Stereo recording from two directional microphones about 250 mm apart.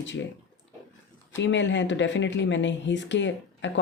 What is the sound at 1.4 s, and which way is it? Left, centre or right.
Speech, left.